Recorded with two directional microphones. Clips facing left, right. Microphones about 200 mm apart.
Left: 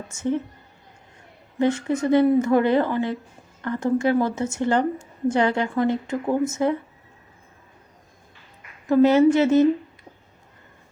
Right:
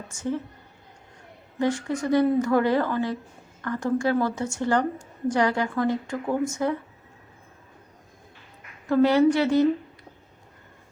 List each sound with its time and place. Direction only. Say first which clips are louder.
0.1 s speech: left 4 dB; 25° left (ahead or behind)
1.5 s speech: left 4 dB; 20° left (ahead or behind)
8.9 s speech: left 3 dB; 20° left (ahead or behind)